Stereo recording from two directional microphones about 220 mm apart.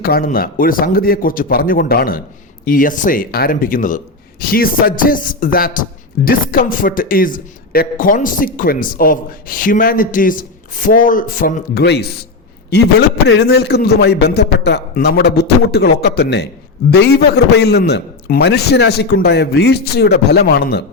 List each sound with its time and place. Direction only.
0.0 s a man's voice: 40° left (ahead or behind)